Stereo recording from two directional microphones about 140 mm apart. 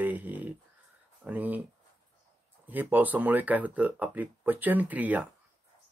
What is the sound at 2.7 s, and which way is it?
Speech, 10° right (ahead or behind).